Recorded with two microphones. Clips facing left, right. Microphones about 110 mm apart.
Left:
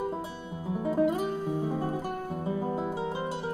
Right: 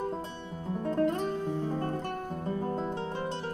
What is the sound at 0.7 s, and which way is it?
Music, 5° left (ahead or behind).